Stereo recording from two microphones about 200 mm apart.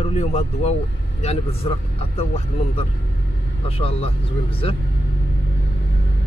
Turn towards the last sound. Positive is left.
turn(degrees=30)  # may be behind; listen again after turning